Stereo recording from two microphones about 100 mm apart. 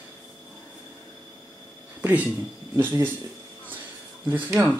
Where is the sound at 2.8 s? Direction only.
20° right (ahead or behind).